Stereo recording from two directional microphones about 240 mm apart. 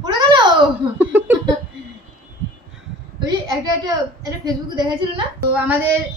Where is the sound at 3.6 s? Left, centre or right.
Centre.